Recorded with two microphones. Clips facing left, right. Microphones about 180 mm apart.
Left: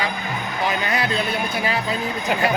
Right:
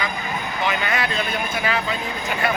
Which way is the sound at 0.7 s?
35° left (ahead or behind).